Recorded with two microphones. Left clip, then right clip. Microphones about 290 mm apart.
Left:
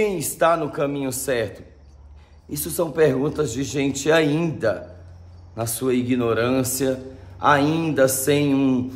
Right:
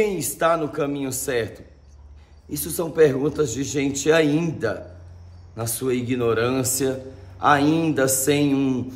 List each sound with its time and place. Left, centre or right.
0.0 s a man's voice: centre